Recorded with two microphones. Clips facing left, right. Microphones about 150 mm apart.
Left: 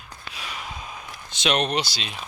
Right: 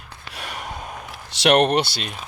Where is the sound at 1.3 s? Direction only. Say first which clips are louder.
Right 7 dB; 75° right (ahead or behind).